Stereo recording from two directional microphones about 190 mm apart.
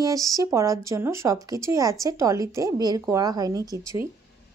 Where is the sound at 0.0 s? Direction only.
15° right (ahead or behind).